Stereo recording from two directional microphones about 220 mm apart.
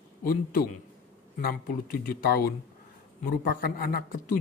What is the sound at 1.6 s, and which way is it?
Speech, 40° left (ahead or behind).